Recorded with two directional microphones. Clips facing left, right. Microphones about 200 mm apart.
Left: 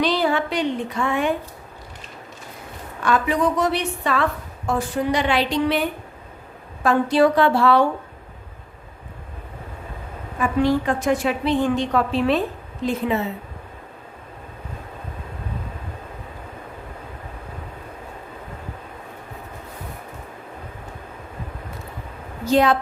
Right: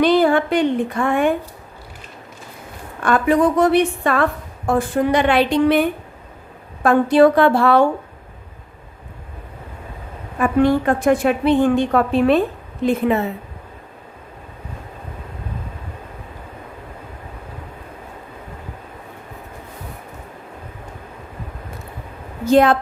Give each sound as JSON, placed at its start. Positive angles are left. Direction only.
{"t": 0.0, "sound": "a woman's voice", "side_deg": -50}
{"t": 3.0, "sound": "a woman's voice", "side_deg": -50}
{"t": 10.3, "sound": "a woman's voice", "side_deg": -55}
{"t": 22.4, "sound": "a woman's voice", "side_deg": -50}